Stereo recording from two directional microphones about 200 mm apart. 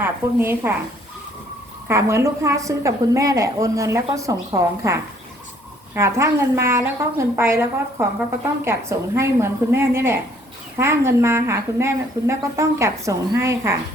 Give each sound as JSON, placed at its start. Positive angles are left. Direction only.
{"t": 0.0, "sound": "a woman's voice", "side_deg": -10}
{"t": 1.9, "sound": "a woman's voice", "side_deg": -15}